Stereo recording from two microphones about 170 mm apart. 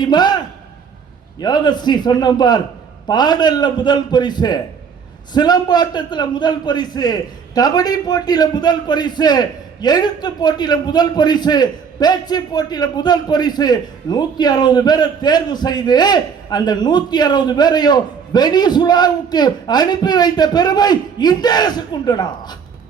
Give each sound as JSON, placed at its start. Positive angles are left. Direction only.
{"t": 0.0, "sound": "a man's voice", "side_deg": 25}